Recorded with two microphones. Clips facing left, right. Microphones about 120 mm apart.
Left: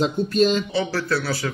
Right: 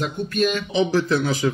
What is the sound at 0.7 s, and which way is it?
Speech, 20° right (ahead or behind).